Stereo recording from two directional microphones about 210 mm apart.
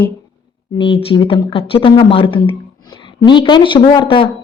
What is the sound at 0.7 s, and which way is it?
A woman's voice, 25° left (ahead or behind).